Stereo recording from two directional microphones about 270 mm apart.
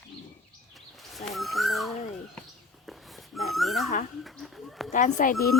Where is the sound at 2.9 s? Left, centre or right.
Centre.